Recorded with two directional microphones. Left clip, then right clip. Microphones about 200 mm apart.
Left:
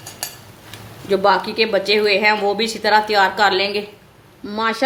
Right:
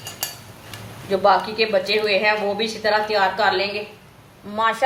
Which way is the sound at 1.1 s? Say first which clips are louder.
Left 1 dB; 55° left (ahead or behind).